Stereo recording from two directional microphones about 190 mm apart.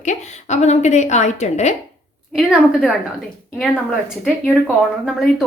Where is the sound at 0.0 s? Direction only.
40° left (ahead or behind).